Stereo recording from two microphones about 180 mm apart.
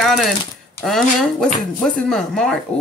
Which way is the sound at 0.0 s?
Centre (ahead or behind).